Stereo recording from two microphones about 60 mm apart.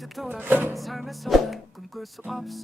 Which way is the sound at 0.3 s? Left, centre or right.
Right.